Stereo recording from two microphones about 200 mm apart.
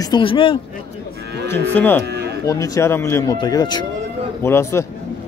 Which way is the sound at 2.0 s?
55° right (ahead or behind).